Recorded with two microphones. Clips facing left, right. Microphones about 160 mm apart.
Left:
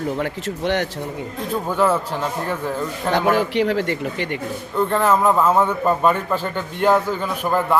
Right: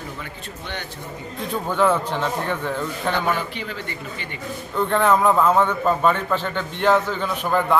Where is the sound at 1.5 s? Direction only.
5° left (ahead or behind).